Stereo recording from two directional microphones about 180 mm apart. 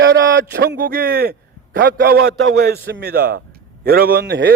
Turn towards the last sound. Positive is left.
turn(degrees=-60)  # may be behind; listen again after turning